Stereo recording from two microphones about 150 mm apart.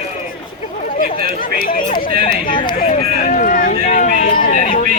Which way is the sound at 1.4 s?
70° left (ahead or behind).